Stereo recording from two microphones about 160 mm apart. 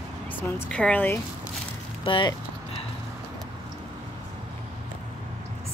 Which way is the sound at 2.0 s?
30° left (ahead or behind).